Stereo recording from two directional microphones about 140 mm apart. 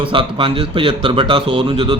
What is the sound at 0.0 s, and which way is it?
Speech, 35° right (ahead or behind).